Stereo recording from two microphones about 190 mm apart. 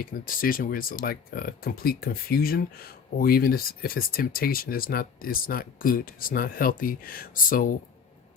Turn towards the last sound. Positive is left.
turn(degrees=45)  # may be behind; listen again after turning